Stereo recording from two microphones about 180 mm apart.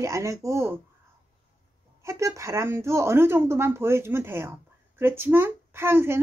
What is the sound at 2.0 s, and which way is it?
A woman's voice, 15° right (ahead or behind).